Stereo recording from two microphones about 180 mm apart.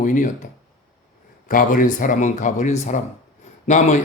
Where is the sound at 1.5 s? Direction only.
50° left (ahead or behind).